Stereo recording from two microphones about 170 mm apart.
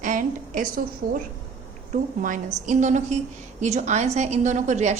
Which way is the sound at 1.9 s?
50° right (ahead or behind).